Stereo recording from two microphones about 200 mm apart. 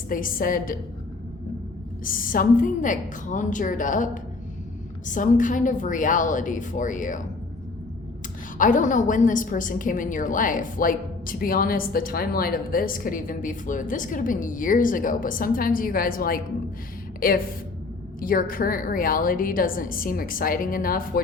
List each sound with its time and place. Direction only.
0.1 s a woman's voice: 45° left (ahead or behind)
2.0 s a woman's voice: 45° left (ahead or behind)
8.5 s a woman's voice: 40° left (ahead or behind)